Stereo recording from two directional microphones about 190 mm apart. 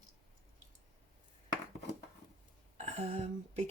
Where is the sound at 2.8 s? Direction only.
35° right (ahead or behind).